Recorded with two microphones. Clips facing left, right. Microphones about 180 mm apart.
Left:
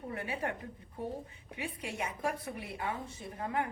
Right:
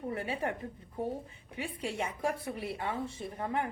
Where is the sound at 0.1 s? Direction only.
30° right (ahead or behind).